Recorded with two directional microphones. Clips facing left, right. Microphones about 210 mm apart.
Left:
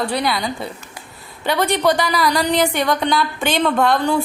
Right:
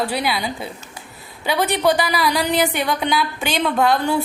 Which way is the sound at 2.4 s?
15° right (ahead or behind).